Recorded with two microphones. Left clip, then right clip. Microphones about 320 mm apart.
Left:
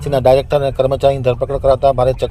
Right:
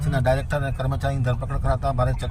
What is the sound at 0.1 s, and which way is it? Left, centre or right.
Speech, left.